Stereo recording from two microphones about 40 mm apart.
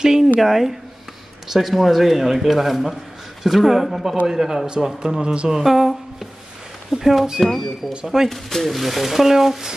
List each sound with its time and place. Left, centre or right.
0.0 s a sound: centre
0.4 s speech: centre
5.2 s a woman's voice: right
5.5 s speech: centre
7.4 s speech: centre